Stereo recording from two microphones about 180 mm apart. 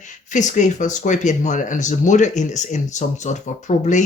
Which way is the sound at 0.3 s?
45° left (ahead or behind).